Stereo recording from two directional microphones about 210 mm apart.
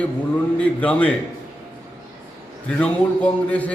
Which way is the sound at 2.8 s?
5° left (ahead or behind).